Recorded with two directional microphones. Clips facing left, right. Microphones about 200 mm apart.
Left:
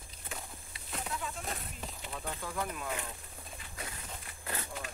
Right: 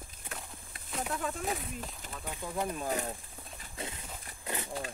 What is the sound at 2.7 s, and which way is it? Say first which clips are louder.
Speech: right 5 dB; 35° right (ahead or behind).